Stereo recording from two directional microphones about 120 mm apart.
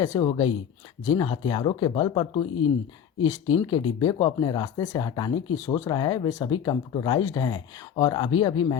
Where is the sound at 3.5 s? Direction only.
45° left (ahead or behind).